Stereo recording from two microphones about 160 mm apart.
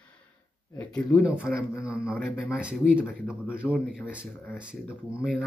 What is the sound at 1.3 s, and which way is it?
Speech, 5° right (ahead or behind).